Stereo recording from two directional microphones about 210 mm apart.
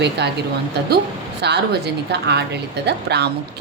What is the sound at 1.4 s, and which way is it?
A woman's voice, 50° right (ahead or behind).